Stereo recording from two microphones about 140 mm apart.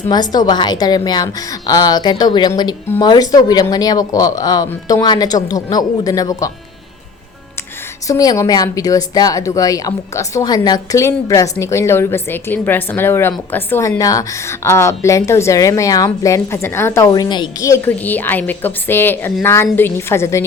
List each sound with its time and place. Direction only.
0.1 s a woman's voice: 30° left (ahead or behind)
8.0 s a woman's voice: 25° left (ahead or behind)
17.1 s a woman's voice: 30° left (ahead or behind)